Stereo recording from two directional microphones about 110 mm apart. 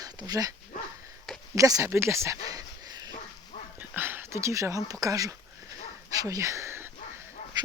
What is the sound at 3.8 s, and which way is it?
Speech, 20° right (ahead or behind).